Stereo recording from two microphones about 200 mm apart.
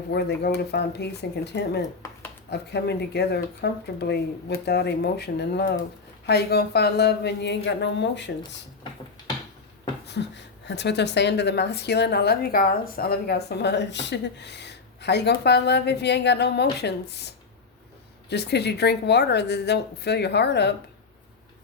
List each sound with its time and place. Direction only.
0.1 s a woman's voice: 55° left (ahead or behind)
10.1 s a woman's voice: 60° left (ahead or behind)